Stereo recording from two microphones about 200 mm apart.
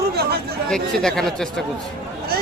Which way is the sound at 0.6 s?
5° left (ahead or behind).